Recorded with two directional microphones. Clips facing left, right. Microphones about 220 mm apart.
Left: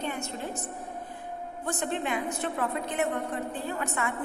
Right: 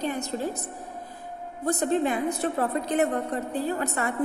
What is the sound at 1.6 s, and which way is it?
A woman's voice, 40° right (ahead or behind).